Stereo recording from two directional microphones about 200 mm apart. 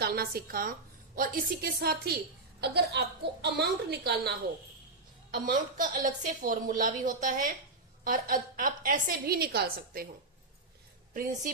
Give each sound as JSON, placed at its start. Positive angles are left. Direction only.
{"t": 0.0, "sound": "a woman's voice", "side_deg": -50}
{"t": 5.3, "sound": "a woman's voice", "side_deg": -45}
{"t": 11.1, "sound": "a woman's voice", "side_deg": -45}